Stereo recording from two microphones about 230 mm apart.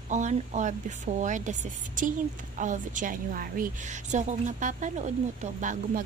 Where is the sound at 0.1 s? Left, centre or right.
Right.